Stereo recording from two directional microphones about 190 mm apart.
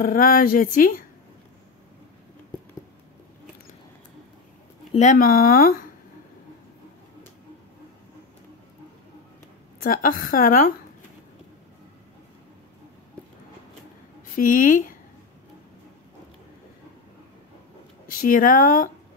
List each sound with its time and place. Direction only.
0.0 s speech: 50° left (ahead or behind)
4.9 s speech: 40° left (ahead or behind)
9.8 s speech: 45° left (ahead or behind)
14.3 s speech: 45° left (ahead or behind)
18.2 s speech: 45° left (ahead or behind)